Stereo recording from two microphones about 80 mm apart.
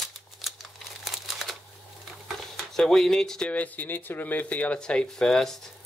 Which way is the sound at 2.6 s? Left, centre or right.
Centre.